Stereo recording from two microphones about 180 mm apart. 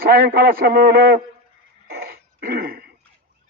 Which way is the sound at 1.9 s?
60° right (ahead or behind).